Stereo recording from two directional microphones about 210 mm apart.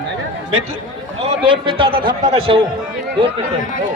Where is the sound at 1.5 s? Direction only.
25° right (ahead or behind).